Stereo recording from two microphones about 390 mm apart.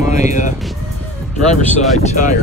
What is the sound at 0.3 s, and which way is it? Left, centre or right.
Speech, centre.